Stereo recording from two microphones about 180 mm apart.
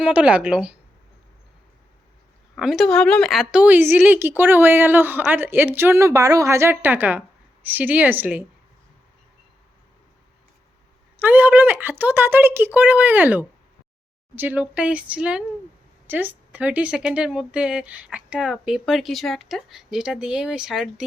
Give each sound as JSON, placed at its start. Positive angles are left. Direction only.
{"t": 0.0, "sound": "a woman's voice", "side_deg": -5}
{"t": 2.6, "sound": "a woman's voice", "side_deg": 0}
{"t": 11.2, "sound": "a woman's voice", "side_deg": -10}